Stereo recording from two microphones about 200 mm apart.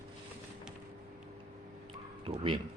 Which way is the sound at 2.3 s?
25° right (ahead or behind).